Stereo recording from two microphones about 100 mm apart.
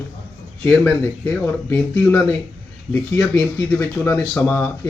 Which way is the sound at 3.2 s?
30° left (ahead or behind).